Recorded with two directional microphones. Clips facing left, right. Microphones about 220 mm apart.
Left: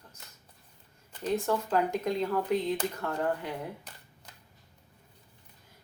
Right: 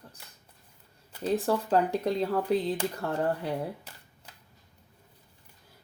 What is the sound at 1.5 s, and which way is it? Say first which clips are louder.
Speech: right 3 dB; 35° right (ahead or behind).